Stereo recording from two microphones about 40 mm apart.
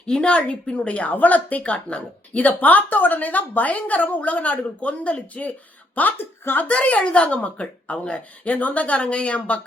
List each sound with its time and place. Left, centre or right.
0.0 s speech: left
6.1 s a woman's voice: left
6.6 s speech: left
8.4 s speech: left